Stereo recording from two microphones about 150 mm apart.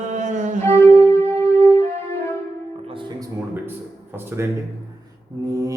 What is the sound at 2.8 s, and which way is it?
Music, 35° right (ahead or behind).